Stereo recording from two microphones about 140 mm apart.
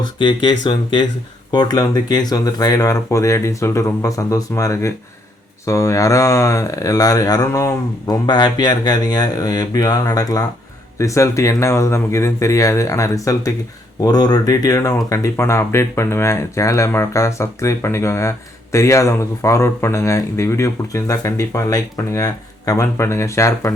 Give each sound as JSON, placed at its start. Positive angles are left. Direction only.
{"t": 0.2, "sound": "speech", "side_deg": 30}